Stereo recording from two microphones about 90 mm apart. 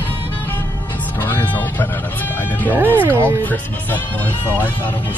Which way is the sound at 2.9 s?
25° right (ahead or behind).